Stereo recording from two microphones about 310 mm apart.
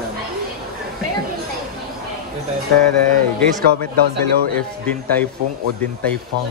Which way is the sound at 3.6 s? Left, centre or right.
Right.